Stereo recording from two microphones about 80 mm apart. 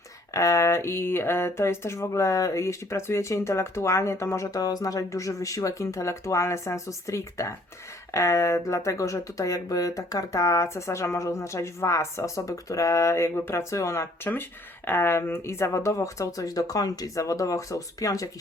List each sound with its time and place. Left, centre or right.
0.3 s speech: left
4.5 s speech: left